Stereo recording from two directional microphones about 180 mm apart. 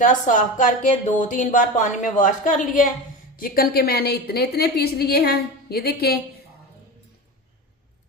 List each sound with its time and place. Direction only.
0.0 s a woman's voice: 45° left (ahead or behind); by 6.1 s 60° left (ahead or behind)